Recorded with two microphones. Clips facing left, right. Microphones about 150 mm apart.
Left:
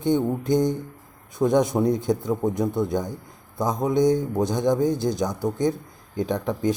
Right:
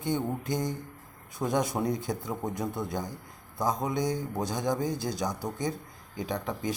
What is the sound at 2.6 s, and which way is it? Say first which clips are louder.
Speech: left 9 dB; 20° left (ahead or behind).